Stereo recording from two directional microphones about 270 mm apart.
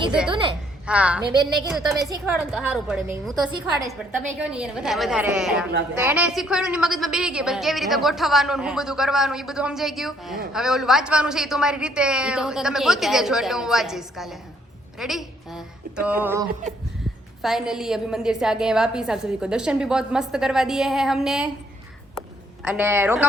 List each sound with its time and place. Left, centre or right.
0.2 s a woman's voice: centre
1.3 s a woman's voice: centre
1.7 s a woman's voice: centre
2.0 s a woman's voice: centre
3.5 s a woman's voice: centre
4.4 s a woman's voice: centre
22.6 s a woman's voice: centre